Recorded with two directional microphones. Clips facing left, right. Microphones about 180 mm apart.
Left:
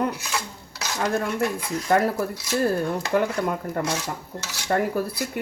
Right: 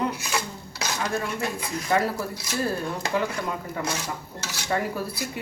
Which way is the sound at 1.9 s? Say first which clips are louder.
Left 3 dB; 50° left (ahead or behind).